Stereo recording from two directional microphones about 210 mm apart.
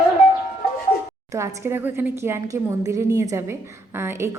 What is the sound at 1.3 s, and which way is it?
A woman's voice, 15° right (ahead or behind).